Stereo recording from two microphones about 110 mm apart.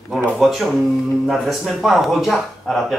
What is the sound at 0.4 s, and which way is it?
Speech, 5° right (ahead or behind).